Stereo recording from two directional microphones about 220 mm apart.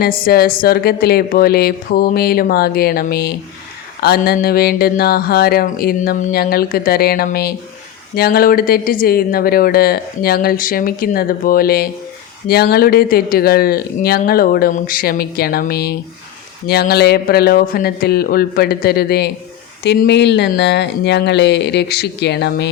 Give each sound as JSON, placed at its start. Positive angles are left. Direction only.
{"t": 0.0, "sound": "speech", "side_deg": 45}